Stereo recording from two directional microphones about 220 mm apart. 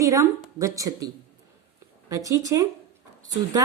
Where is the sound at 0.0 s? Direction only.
15° right (ahead or behind).